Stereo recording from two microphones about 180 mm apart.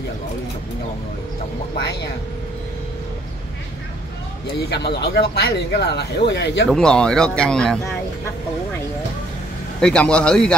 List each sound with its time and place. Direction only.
4.5 s speech: 65° left (ahead or behind)
6.7 s speech: 5° left (ahead or behind)
9.8 s speech: 5° left (ahead or behind)